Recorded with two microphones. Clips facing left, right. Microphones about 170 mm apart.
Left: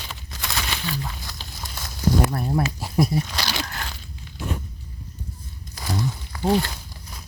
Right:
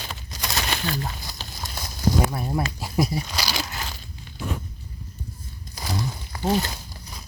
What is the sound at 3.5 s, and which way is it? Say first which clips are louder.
Crunch: even; 5° right (ahead or behind).